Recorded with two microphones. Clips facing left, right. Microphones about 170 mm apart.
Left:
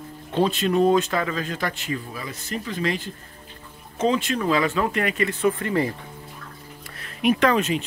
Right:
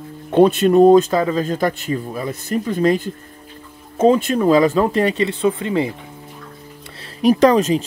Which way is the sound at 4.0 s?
45° right (ahead or behind).